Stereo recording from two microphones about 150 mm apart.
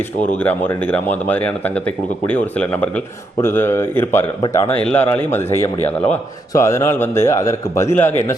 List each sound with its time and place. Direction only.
0.4 s a man's voice: 10° left (ahead or behind)